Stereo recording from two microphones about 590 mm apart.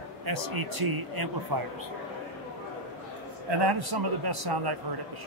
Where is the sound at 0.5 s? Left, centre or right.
Right.